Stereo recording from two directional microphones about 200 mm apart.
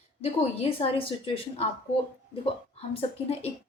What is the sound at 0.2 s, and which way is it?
A woman's voice, 30° left (ahead or behind).